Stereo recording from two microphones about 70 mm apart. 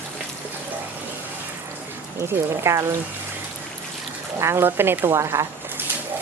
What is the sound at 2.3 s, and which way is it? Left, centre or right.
Speech, right.